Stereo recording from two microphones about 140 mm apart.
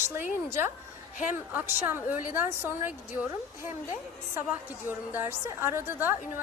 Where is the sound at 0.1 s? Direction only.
15° right (ahead or behind).